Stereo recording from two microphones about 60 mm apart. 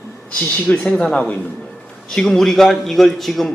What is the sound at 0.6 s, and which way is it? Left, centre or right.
Speech, centre.